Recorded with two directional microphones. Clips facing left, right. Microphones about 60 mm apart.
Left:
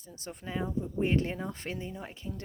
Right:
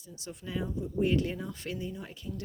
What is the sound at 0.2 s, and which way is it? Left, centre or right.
A woman's voice, left.